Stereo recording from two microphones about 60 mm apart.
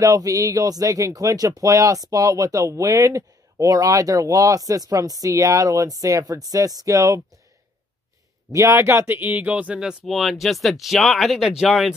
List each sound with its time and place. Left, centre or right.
0.0 s speech: right
1.6 s speech: right
8.5 s speech: right
8.7 s speech: right
9.5 s speech: right
10.0 s speech: centre